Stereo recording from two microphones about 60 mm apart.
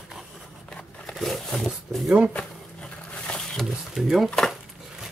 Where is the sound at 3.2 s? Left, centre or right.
Centre.